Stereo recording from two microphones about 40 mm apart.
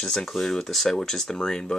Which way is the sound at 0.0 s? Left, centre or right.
Centre.